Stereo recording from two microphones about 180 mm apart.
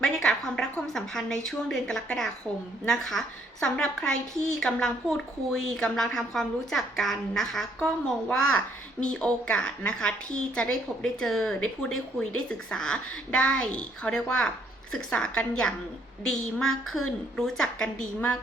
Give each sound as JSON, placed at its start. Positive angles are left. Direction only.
{"t": 0.0, "sound": "a woman's voice", "side_deg": 5}